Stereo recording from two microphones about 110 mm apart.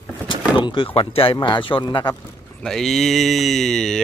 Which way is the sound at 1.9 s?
40° left (ahead or behind).